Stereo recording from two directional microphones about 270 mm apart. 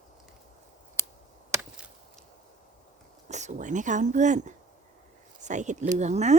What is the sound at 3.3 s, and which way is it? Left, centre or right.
Speech, right.